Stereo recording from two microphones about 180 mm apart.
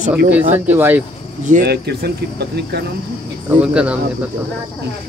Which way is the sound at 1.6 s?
65° right (ahead or behind).